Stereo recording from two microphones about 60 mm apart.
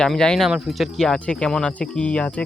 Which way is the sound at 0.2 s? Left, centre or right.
Centre.